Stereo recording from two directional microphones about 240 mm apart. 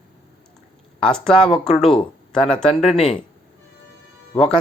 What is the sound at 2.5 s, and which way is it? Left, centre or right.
Speech, centre.